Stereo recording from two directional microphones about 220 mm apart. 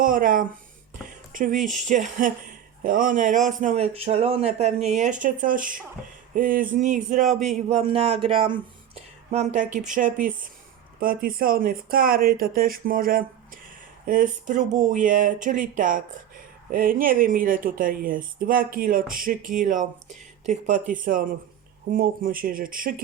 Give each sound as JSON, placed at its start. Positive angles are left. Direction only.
{"t": 0.0, "sound": "a man's voice", "side_deg": -40}
{"t": 7.3, "sound": "a man's voice", "side_deg": 0}
{"t": 7.7, "sound": "speech", "side_deg": -25}
{"t": 9.0, "sound": "a sound", "side_deg": -30}
{"t": 9.9, "sound": "a man's voice", "side_deg": -35}